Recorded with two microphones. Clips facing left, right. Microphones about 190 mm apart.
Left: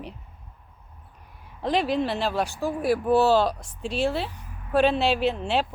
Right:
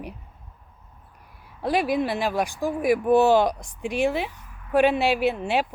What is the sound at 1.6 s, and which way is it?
Speech, 10° right (ahead or behind).